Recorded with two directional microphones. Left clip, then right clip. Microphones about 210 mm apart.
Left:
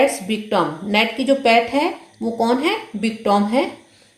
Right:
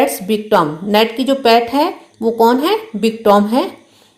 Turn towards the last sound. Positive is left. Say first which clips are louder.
# right 6 dB
turn(degrees=-35)  # may be behind; listen again after turning